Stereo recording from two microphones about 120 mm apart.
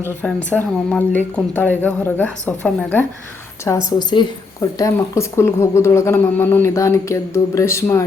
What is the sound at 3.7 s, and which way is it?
Speech, 25° left (ahead or behind).